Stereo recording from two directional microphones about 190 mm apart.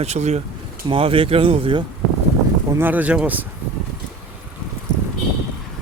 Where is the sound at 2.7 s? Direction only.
10° right (ahead or behind).